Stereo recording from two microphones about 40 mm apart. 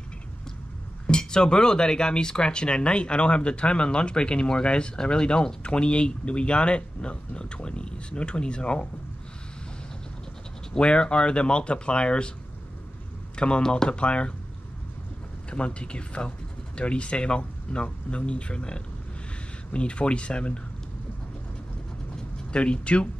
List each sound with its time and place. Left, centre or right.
1.0 s speech: left
10.7 s speech: left
13.4 s speech: left
15.5 s speech: left
22.1 s a sound: left